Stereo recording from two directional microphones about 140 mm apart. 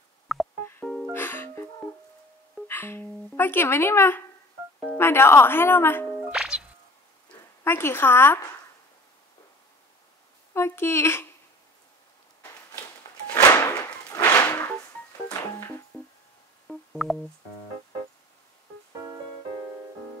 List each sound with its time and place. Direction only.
0.3 s music: centre (ahead or behind)
1.1 s music: 15° left (ahead or behind)
2.7 s music: 15° left (ahead or behind)
3.3 s speech: 15° left (ahead or behind)
6.3 s music: 5° right (ahead or behind)
7.6 s speech: 15° left (ahead or behind)
10.5 s speech: 20° left (ahead or behind)
13.3 s music: 20° left (ahead or behind)
15.9 s music: 10° left (ahead or behind)